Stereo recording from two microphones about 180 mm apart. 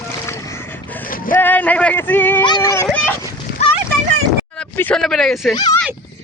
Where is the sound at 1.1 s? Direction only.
50° left (ahead or behind).